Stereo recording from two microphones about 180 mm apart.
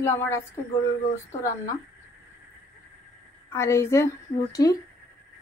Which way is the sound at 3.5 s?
15° left (ahead or behind).